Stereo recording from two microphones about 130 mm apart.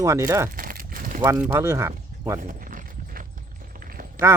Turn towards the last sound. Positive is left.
turn(degrees=-90)